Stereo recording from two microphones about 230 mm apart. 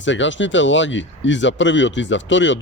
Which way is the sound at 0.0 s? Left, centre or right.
Left.